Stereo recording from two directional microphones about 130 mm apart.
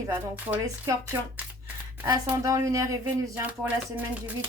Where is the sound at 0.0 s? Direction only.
20° right (ahead or behind).